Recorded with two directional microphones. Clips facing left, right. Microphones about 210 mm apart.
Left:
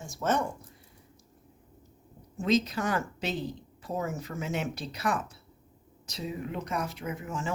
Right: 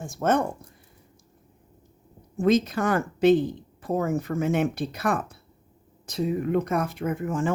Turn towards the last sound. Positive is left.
turn(degrees=-55)  # may be behind; listen again after turning